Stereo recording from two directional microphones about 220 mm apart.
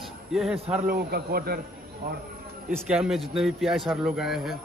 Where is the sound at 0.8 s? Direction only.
45° right (ahead or behind).